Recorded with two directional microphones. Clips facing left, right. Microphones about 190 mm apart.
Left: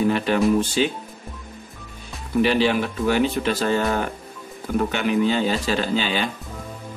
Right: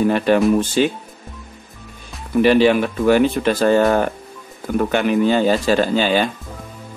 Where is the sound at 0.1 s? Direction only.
50° right (ahead or behind).